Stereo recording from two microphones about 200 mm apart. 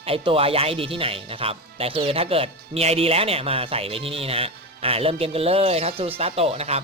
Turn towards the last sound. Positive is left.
turn(degrees=-30)  # may be behind; listen again after turning